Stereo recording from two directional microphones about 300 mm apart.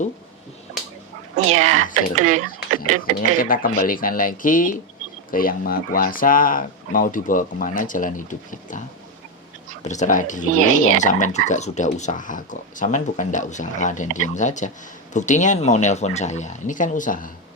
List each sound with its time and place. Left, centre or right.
1.6 s speech: right
3.2 s speech: left
9.8 s speech: left